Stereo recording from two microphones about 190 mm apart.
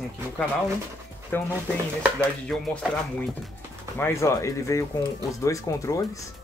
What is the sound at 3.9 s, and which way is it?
Speech, 15° left (ahead or behind).